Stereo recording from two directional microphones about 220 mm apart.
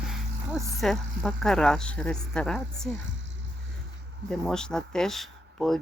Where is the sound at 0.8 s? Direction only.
Centre (ahead or behind).